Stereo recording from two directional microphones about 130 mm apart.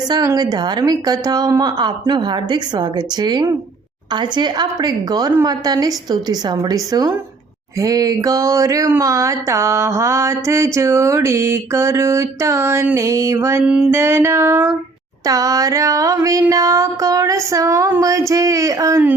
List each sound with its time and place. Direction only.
0.3 s a woman's voice: 30° right (ahead or behind)
7.8 s mantra: 30° right (ahead or behind)